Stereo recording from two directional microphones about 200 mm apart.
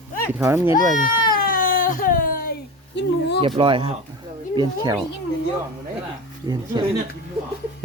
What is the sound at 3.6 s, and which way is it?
Speech, 25° right (ahead or behind).